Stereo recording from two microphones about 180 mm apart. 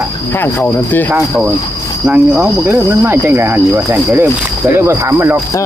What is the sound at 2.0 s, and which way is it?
Speech, 5° right (ahead or behind).